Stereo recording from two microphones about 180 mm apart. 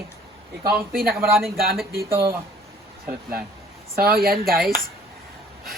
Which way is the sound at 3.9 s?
60° right (ahead or behind).